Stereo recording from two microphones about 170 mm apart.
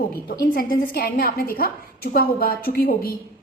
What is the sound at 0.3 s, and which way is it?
A woman's voice, 60° left (ahead or behind).